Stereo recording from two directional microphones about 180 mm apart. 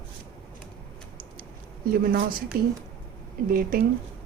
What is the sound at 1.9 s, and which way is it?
A woman's voice, 55° right (ahead or behind).